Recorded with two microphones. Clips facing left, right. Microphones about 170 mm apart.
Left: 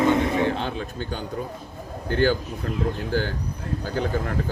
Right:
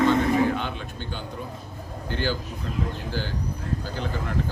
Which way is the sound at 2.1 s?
50° left (ahead or behind).